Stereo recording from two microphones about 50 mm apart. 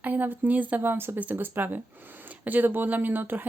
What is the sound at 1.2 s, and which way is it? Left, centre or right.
Speech, right.